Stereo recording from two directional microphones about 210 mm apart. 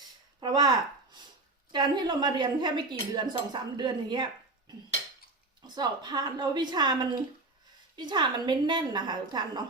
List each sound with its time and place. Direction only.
0.3 s speech: 20° right (ahead or behind)
1.7 s a woman's voice: 20° right (ahead or behind)
5.6 s a woman's voice: 20° right (ahead or behind)